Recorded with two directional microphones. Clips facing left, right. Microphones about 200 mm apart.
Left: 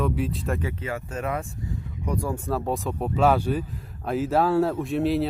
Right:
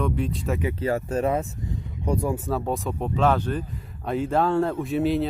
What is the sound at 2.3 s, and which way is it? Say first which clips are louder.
Speech: right 1 dB; centre (ahead or behind).